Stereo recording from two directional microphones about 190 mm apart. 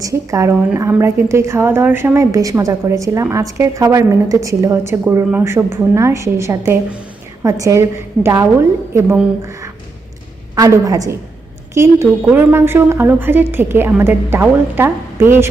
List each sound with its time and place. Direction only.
0.0 s a woman's voice: 15° right (ahead or behind)
10.5 s a woman's voice: 15° right (ahead or behind)